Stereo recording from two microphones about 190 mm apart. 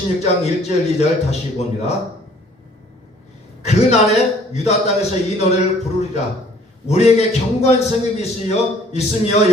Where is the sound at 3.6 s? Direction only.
35° left (ahead or behind).